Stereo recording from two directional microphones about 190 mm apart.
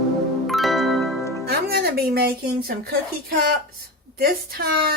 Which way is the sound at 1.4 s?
55° right (ahead or behind).